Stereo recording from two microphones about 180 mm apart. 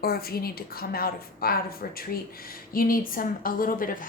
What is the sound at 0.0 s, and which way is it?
A woman's voice, 55° left (ahead or behind).